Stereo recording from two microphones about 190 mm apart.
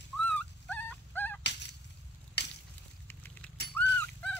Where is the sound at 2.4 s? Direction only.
60° left (ahead or behind).